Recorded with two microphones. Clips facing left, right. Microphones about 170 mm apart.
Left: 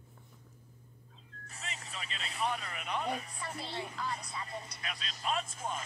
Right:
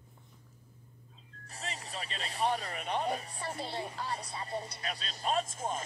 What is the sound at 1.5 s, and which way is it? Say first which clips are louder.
Speech: right 4 dB; 35° right (ahead or behind).